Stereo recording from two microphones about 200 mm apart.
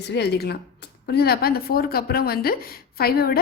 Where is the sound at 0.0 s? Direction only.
55° left (ahead or behind).